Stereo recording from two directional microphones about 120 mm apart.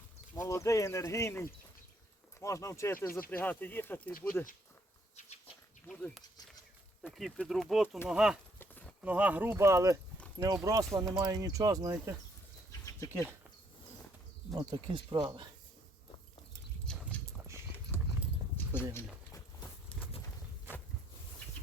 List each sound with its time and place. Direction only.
0.3 s speech: 25° left (ahead or behind)
5.1 s bee: 65° left (ahead or behind)
5.9 s speech: centre (ahead or behind); by 12.1 s 30° right (ahead or behind)
14.6 s speech: 35° right (ahead or behind)
16.8 s horse: 5° left (ahead or behind)
17.9 s clip-clop: 20° left (ahead or behind)
18.5 s a sound: 15° left (ahead or behind)
19.9 s a sound: 10° left (ahead or behind)